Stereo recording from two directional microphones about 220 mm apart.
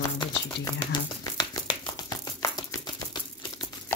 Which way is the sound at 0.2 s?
15° left (ahead or behind).